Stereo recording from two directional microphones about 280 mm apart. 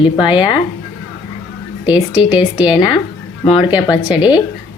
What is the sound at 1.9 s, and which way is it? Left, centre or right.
Speech, centre.